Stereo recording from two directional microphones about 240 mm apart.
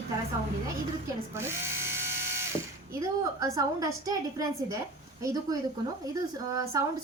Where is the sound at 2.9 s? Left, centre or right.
Centre.